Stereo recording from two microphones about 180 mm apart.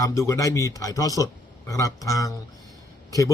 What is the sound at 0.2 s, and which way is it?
A man's voice, 15° left (ahead or behind).